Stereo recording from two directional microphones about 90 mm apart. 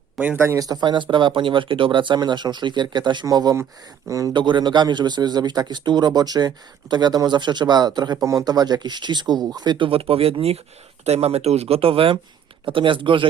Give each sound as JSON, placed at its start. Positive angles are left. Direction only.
{"t": 0.2, "sound": "a man's voice", "side_deg": -20}
{"t": 0.4, "sound": "speech", "side_deg": -40}
{"t": 3.2, "sound": "speech", "side_deg": -45}
{"t": 4.4, "sound": "speech", "side_deg": -60}
{"t": 8.2, "sound": "speech", "side_deg": -40}
{"t": 11.7, "sound": "speech", "side_deg": -90}
{"t": 12.6, "sound": "speech", "side_deg": -70}